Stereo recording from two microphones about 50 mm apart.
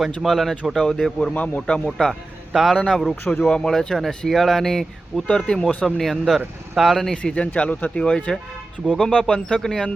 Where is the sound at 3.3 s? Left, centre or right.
Centre.